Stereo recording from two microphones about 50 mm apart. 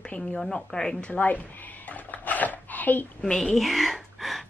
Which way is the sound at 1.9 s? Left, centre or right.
Left.